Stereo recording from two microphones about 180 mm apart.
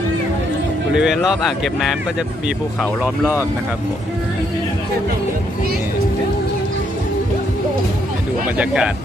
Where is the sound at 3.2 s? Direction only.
15° left (ahead or behind).